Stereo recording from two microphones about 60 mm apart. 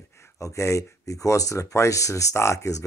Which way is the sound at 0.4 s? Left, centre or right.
Left.